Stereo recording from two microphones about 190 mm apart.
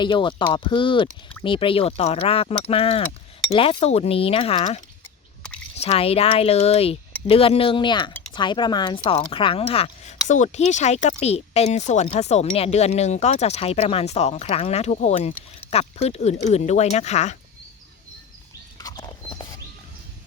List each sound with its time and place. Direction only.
0.0 s speech: 25° left (ahead or behind)
18.8 s horse: 20° left (ahead or behind)